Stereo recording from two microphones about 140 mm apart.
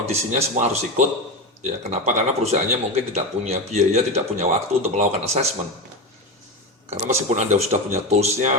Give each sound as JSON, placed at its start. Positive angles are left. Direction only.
{"t": 0.0, "sound": "speech", "side_deg": -50}
{"t": 6.9, "sound": "speech", "side_deg": -55}